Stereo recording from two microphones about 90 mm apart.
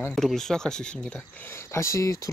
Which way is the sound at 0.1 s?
5° left (ahead or behind).